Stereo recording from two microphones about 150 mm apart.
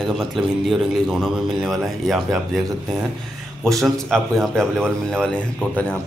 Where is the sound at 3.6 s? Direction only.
Centre (ahead or behind).